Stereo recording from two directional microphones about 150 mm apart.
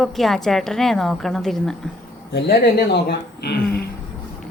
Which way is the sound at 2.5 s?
90° left.